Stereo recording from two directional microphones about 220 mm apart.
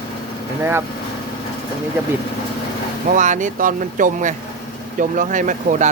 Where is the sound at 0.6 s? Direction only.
10° right (ahead or behind).